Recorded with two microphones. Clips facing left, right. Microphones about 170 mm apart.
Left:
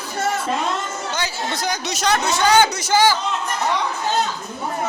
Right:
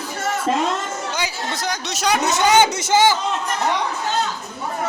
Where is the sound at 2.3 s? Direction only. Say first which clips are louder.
Right 1 dB; 20° right (ahead or behind).